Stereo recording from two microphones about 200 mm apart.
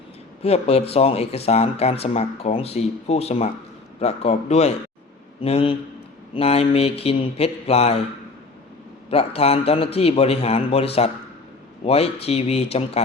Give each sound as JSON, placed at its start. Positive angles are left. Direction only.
{"t": 0.4, "sound": "a man's voice", "side_deg": 30}
{"t": 9.0, "sound": "a man's voice", "side_deg": 30}